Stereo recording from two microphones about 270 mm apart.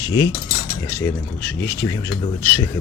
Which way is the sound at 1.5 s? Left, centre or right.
Centre.